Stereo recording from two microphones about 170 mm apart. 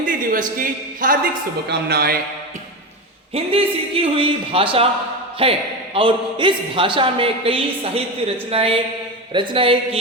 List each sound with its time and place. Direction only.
0.0 s a man's voice: 55° right (ahead or behind)
1.6 s speech: 75° right (ahead or behind)
3.3 s speech: 35° right (ahead or behind)
9.3 s a sound: 30° right (ahead or behind)